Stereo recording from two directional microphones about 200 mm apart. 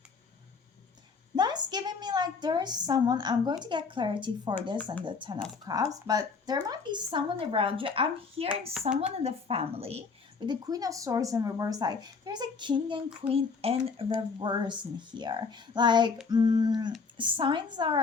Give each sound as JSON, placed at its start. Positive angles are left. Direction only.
{"t": 1.4, "sound": "a woman's voice", "side_deg": -20}